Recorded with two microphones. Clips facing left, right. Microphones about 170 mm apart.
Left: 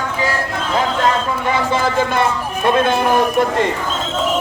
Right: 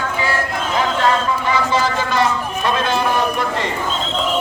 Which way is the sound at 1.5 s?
55° left (ahead or behind).